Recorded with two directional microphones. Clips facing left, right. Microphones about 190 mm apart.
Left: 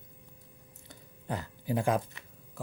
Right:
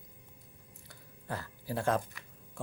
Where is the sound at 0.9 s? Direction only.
20° left (ahead or behind).